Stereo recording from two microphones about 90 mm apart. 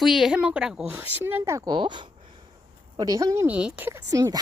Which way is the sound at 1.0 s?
25° right (ahead or behind).